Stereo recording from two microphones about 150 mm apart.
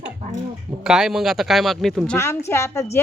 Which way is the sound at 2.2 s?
20° left (ahead or behind).